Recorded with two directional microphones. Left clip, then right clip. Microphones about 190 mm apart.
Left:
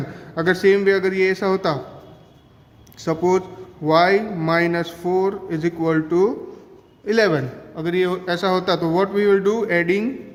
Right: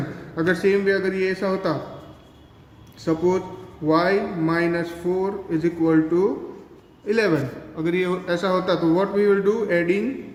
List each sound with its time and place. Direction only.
0.3 s speech: 45° left (ahead or behind)
3.0 s speech: 50° left (ahead or behind)